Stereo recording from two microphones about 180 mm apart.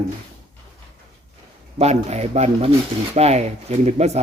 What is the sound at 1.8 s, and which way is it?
Speech, 40° right (ahead or behind).